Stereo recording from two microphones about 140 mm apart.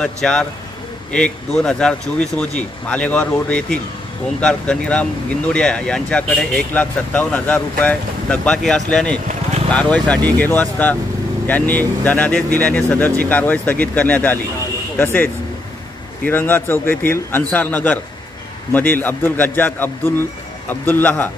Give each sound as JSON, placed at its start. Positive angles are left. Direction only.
{"t": 0.0, "sound": "speech", "side_deg": 5}
{"t": 16.3, "sound": "speech", "side_deg": 15}